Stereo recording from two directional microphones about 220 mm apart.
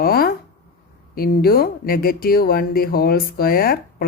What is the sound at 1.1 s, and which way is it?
Speech, 45° left (ahead or behind).